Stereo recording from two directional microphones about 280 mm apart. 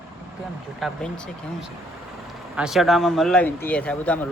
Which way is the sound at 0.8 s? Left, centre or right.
Centre.